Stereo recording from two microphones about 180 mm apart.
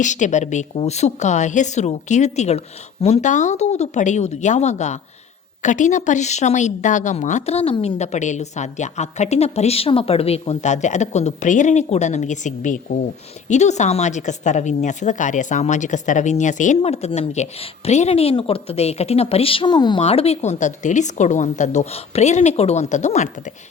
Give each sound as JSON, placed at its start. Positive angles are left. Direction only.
{"t": 0.0, "sound": "a woman's voice", "side_deg": 40}